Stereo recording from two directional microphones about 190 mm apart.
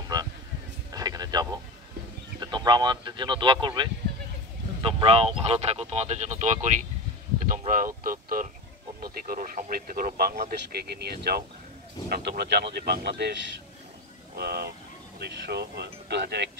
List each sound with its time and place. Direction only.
0.1 s a sound: 20° right (ahead or behind)
2.4 s a man's voice: 20° right (ahead or behind); by 13.3 s 60° right (ahead or behind)
14.3 s speech: 55° right (ahead or behind)